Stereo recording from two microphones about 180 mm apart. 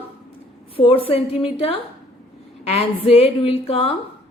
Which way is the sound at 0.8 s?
30° left (ahead or behind).